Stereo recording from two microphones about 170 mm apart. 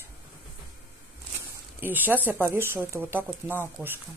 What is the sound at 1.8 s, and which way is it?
Speech, 10° right (ahead or behind).